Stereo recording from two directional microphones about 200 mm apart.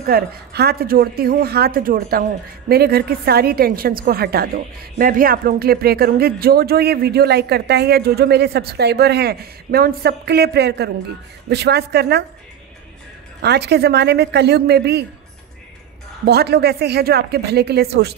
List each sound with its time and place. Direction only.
0.0 s a woman's voice: 50° right (ahead or behind)
13.4 s a woman's voice: 55° right (ahead or behind)
16.3 s speech: 55° right (ahead or behind)